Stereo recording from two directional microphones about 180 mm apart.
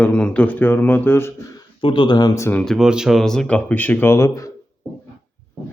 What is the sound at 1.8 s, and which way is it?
Speech, 25° left (ahead or behind).